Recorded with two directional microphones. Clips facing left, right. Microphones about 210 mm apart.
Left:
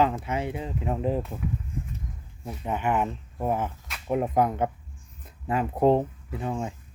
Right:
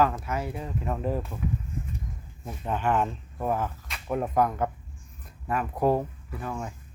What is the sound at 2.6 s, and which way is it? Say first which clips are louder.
Speech: even; 10° left (ahead or behind).